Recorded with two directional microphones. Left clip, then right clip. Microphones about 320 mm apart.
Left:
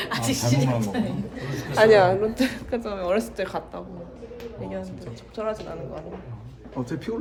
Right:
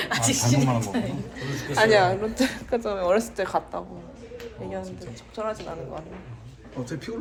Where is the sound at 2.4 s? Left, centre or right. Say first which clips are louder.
Right 1 dB; centre.